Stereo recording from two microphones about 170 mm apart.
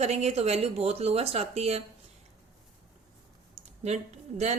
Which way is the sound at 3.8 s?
40° right (ahead or behind).